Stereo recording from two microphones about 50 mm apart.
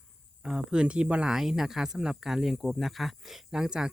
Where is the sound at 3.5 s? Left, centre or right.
Centre.